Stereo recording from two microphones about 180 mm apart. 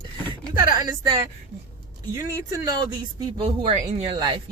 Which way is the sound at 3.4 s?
35° right (ahead or behind).